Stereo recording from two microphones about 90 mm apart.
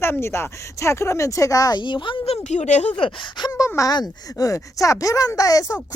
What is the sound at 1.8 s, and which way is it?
Speech, 60° left (ahead or behind).